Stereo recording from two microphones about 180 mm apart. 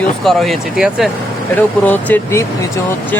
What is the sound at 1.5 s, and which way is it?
Speech, 10° left (ahead or behind).